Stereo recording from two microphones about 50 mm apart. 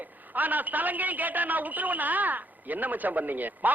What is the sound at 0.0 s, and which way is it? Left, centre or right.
A man's voice, right.